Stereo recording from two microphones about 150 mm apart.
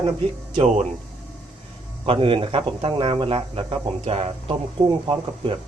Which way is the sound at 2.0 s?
35° right (ahead or behind).